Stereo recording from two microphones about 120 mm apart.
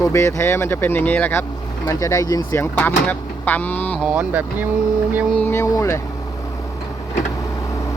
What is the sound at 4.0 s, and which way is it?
Speech, 10° right (ahead or behind).